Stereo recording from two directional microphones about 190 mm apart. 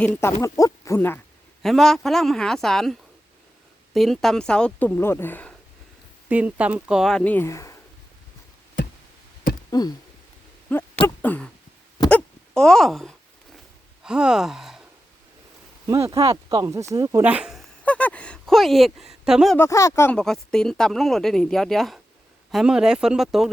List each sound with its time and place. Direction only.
0.0 s speech: 10° left (ahead or behind)
6.2 s speech: 5° right (ahead or behind); by 7.8 s 15° left (ahead or behind)
8.8 s tick: 45° left (ahead or behind)
9.5 s a sound: 45° left (ahead or behind)
10.7 s speech: 5° left (ahead or behind)
11.0 s owl: 10° left (ahead or behind)
12.0 s wail: 5° left (ahead or behind)
14.0 s a sound: 5° right (ahead or behind)
16.0 s speech: 15° right (ahead or behind); by 19.5 s centre (ahead or behind)
19.5 s speech: 15° left (ahead or behind); by 23.5 s centre (ahead or behind)